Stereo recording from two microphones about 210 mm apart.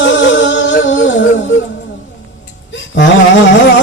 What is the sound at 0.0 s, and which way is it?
Music, 60° left (ahead or behind).